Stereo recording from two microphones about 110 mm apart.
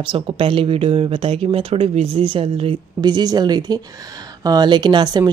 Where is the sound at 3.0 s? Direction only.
40° right (ahead or behind).